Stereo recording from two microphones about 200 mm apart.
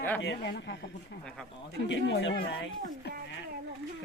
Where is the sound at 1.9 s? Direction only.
60° left (ahead or behind).